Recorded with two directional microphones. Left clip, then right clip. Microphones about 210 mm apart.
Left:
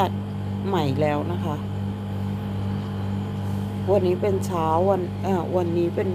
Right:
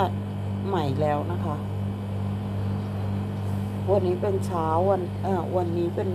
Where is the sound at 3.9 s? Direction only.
20° left (ahead or behind).